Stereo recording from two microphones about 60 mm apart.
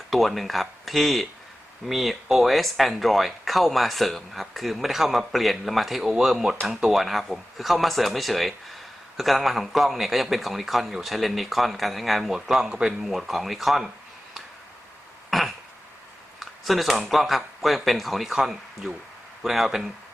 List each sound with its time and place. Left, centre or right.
0.1 s speech: centre
15.3 s throat clearing: centre
16.4 s speech: centre